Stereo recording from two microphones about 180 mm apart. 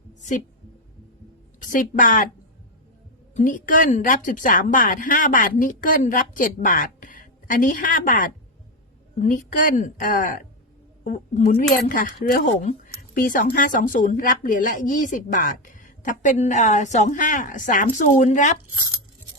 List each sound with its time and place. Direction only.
0.2 s a sound: 45° left (ahead or behind)
1.5 s a woman's voice: 45° left (ahead or behind)
3.3 s a woman's voice: 45° left (ahead or behind)